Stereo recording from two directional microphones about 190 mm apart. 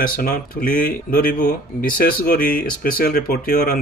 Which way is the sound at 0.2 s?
50° left (ahead or behind).